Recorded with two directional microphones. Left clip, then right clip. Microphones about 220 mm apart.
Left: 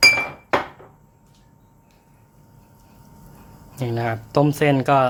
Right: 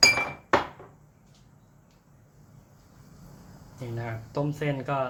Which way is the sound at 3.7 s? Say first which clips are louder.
Left 12 dB; 50° left (ahead or behind).